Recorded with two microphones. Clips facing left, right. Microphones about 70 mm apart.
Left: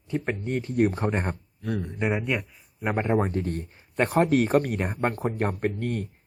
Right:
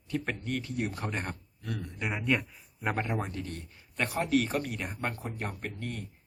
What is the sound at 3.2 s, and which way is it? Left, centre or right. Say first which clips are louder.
Speech: left 10 dB; left.